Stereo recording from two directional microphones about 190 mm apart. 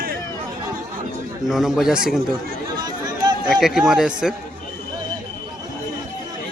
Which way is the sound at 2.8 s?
20° right (ahead or behind).